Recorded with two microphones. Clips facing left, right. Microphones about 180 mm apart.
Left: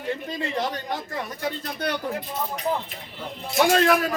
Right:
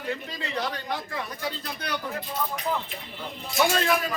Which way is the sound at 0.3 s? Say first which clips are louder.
Left 4 dB; 20° left (ahead or behind).